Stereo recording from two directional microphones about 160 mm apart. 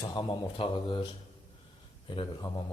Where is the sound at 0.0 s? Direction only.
25° left (ahead or behind).